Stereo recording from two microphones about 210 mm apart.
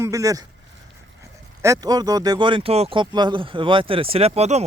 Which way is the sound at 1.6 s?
15° right (ahead or behind).